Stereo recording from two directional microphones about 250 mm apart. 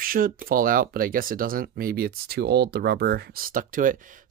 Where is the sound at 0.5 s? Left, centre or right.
Right.